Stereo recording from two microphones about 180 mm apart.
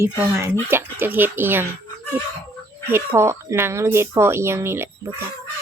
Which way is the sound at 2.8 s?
15° right (ahead or behind).